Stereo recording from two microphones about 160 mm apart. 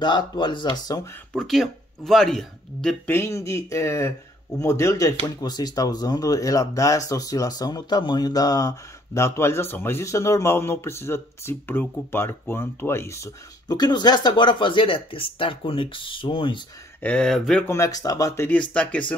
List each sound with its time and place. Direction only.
0.0 s speech: 30° left (ahead or behind)
1.3 s speech: centre (ahead or behind)
3.2 s speech: 20° left (ahead or behind)
17.0 s speech: 5° left (ahead or behind)
17.6 s speech: 20° left (ahead or behind)